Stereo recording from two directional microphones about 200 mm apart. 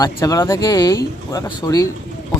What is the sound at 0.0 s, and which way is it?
Speech, 15° left (ahead or behind).